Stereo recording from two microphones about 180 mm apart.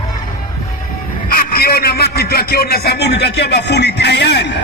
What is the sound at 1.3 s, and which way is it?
A man's voice, 55° left (ahead or behind).